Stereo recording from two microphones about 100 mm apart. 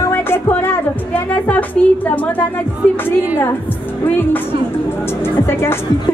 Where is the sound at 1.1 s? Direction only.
15° left (ahead or behind).